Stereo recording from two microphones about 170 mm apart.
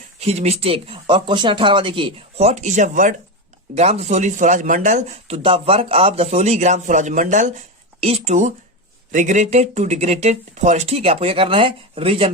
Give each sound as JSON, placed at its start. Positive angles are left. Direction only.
{"t": 0.2, "sound": "speech", "side_deg": -40}
{"t": 3.8, "sound": "speech", "side_deg": -40}